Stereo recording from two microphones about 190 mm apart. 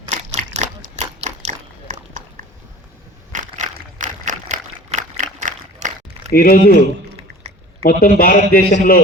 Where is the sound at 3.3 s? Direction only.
40° right (ahead or behind).